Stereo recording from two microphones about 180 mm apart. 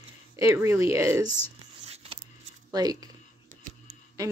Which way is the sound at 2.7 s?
20° right (ahead or behind).